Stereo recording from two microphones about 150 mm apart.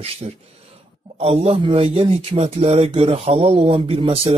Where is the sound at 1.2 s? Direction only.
40° right (ahead or behind).